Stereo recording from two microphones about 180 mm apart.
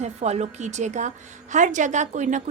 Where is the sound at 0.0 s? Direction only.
40° right (ahead or behind).